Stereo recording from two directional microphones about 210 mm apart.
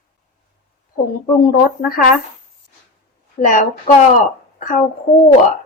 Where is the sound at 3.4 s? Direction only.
35° left (ahead or behind).